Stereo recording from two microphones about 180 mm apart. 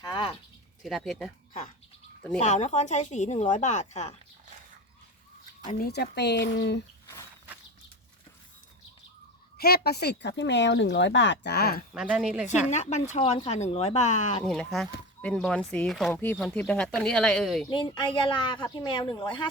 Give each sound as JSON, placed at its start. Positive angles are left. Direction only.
{"t": 0.0, "sound": "a sound", "side_deg": 30}
{"t": 0.8, "sound": "speech", "side_deg": 0}
{"t": 2.4, "sound": "speech", "side_deg": 40}
{"t": 5.7, "sound": "speech", "side_deg": 55}
{"t": 9.6, "sound": "speech", "side_deg": 60}
{"t": 11.9, "sound": "speech", "side_deg": -5}
{"t": 12.7, "sound": "speech", "side_deg": 40}
{"t": 14.4, "sound": "speech", "side_deg": 0}
{"t": 17.7, "sound": "a woman's voice", "side_deg": 25}